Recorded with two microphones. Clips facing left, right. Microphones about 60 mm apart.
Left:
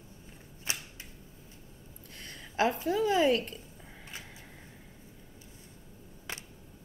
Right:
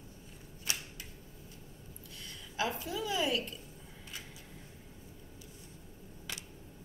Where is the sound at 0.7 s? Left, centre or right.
Left.